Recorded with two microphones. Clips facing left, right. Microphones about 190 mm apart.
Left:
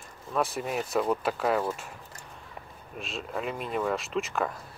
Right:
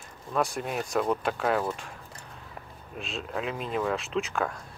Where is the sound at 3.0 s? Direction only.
Centre (ahead or behind).